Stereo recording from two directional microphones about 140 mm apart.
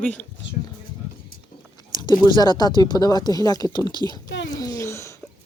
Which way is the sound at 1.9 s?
30° left (ahead or behind).